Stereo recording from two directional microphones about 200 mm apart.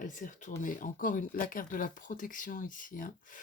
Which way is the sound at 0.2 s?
40° left (ahead or behind).